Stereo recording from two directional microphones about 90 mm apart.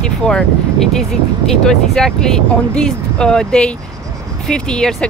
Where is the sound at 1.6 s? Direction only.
5° left (ahead or behind).